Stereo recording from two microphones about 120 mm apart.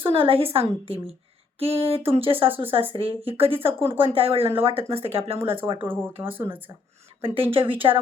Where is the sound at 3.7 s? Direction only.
20° right (ahead or behind).